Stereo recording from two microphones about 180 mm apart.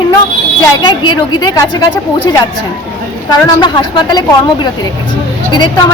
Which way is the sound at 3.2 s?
25° left (ahead or behind).